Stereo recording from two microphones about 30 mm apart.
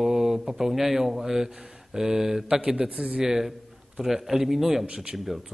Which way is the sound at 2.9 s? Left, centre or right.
Right.